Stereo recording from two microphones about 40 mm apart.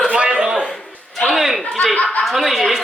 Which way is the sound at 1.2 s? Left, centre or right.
Centre.